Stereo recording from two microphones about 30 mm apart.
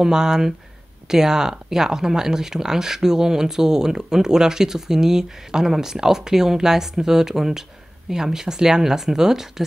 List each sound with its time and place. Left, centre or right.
0.0 s speech: centre